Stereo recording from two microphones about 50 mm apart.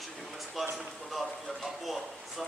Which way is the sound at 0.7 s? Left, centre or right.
Centre.